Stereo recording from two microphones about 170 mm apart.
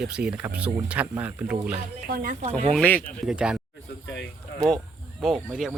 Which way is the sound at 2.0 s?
55° right (ahead or behind).